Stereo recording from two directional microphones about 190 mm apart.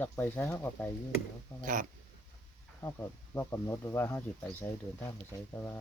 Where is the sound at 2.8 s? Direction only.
15° left (ahead or behind).